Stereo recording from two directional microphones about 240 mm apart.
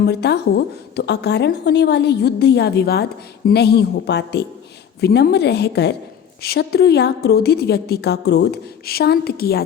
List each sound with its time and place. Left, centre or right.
0.0 s a woman's voice: left